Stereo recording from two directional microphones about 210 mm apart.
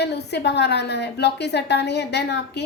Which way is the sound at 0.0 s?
55° left (ahead or behind).